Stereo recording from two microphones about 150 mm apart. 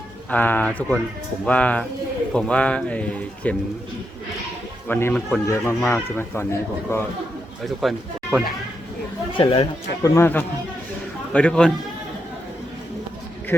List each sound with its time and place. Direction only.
0.3 s speech: 10° left (ahead or behind)
4.9 s speech: 15° left (ahead or behind)
7.6 s speech: centre (ahead or behind)
9.4 s speech: 35° left (ahead or behind)
10.0 s speech: 15° left (ahead or behind)
13.5 s speech: 15° left (ahead or behind)